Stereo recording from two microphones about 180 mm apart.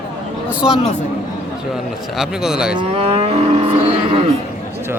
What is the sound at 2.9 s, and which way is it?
Livestock, 35° right (ahead or behind).